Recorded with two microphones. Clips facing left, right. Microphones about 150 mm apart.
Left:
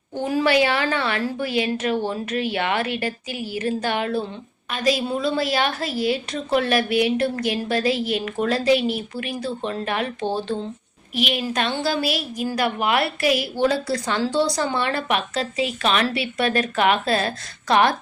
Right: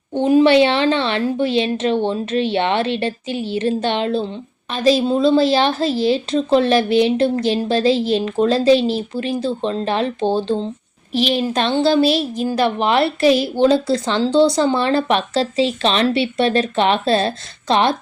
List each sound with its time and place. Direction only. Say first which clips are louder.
0.1 s a woman's voice: right 8 dB; 20° right (ahead or behind)